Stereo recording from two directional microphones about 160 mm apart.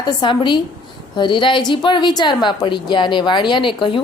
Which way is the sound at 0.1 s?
30° left (ahead or behind).